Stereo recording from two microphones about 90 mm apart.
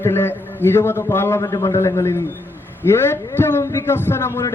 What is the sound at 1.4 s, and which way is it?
A man's voice, 40° left (ahead or behind).